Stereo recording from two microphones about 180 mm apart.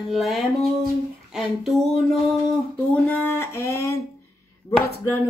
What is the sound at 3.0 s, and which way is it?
Speech, 10° left (ahead or behind).